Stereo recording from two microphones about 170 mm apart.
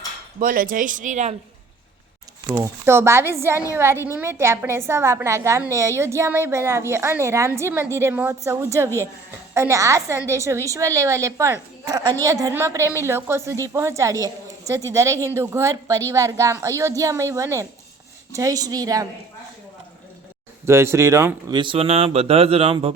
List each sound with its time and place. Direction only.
0.3 s speech: 55° right (ahead or behind)
2.8 s a woman's voice: 15° right (ahead or behind)
20.7 s a woman's voice: 15° right (ahead or behind)
21.6 s speech: 35° right (ahead or behind)